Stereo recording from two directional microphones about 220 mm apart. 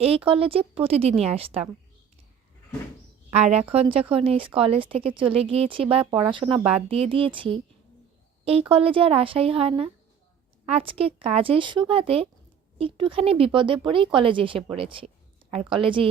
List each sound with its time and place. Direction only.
0.0 s speech: 25° right (ahead or behind)
3.2 s speech: 30° right (ahead or behind)
8.7 s speech: 25° right (ahead or behind)